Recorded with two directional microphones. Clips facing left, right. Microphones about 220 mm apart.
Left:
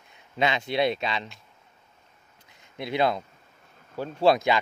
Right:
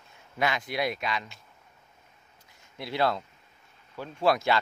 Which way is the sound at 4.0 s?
30° left (ahead or behind).